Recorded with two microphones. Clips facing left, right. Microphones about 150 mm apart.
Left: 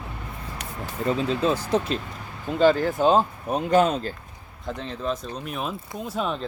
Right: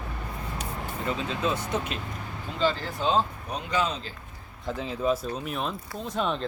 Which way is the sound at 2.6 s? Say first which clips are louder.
Left 8 dB; 50° left (ahead or behind).